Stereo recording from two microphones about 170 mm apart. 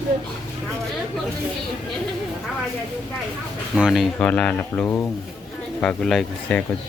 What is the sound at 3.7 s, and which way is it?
Speech, 5° right (ahead or behind).